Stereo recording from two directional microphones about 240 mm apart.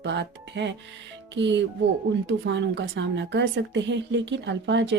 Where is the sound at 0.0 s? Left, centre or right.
Right.